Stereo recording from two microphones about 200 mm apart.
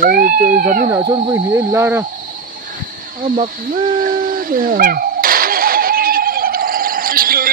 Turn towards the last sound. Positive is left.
turn(degrees=-45)  # may be behind; listen again after turning